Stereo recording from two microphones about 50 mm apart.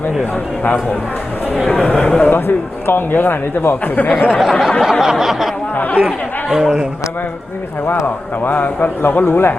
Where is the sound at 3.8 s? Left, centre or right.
Left.